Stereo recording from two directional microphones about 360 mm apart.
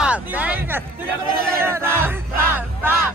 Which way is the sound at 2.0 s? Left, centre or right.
Centre.